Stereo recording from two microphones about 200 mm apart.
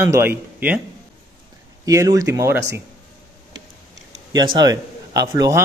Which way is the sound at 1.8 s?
15° right (ahead or behind).